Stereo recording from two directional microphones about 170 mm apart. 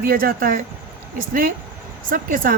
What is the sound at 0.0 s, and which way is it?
Speech, 60° right (ahead or behind).